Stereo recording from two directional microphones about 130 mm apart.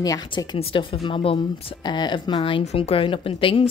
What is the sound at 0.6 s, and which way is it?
Speech, 45° left (ahead or behind).